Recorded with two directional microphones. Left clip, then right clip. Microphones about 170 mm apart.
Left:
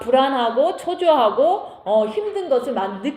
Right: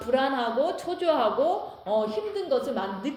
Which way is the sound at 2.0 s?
35° left (ahead or behind).